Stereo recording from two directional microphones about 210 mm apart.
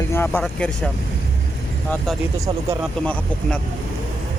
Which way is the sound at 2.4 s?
15° right (ahead or behind).